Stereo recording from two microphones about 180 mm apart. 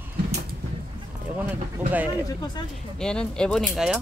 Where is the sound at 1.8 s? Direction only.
10° right (ahead or behind).